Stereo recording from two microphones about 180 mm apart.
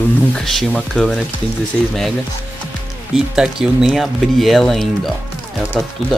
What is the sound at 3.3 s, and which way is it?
Speech, 5° right (ahead or behind).